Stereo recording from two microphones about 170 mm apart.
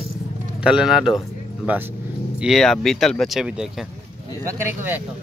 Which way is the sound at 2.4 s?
Centre (ahead or behind).